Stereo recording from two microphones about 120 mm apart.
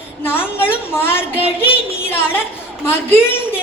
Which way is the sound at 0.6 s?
20° left (ahead or behind).